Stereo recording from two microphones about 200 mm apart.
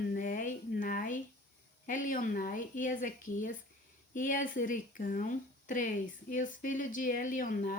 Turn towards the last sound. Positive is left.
turn(degrees=40)  # may be behind; listen again after turning